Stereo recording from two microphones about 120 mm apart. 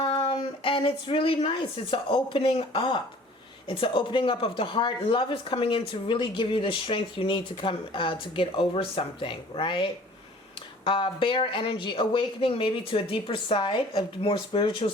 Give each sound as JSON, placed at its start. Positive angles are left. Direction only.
{"t": 0.0, "sound": "a woman's voice", "side_deg": 50}